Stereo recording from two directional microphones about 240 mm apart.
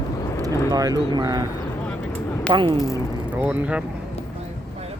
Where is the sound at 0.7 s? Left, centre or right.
Centre.